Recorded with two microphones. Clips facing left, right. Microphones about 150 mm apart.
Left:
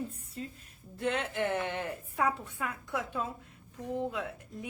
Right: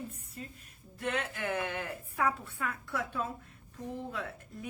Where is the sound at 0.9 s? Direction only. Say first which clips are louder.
Left 4 dB; 30° left (ahead or behind).